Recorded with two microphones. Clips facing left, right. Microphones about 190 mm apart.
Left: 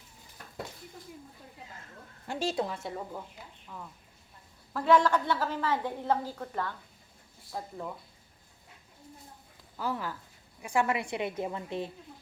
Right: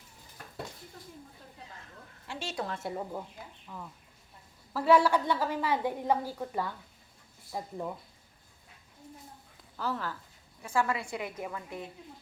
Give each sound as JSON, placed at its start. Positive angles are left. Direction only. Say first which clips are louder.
{"t": 2.2, "sound": "a woman's voice", "louder": "left 7 dB", "side_deg": 40}
{"t": 2.7, "sound": "a woman's voice", "louder": "right 2 dB", "side_deg": -5}
{"t": 9.7, "sound": "a woman's voice", "louder": "left 1 dB", "side_deg": 10}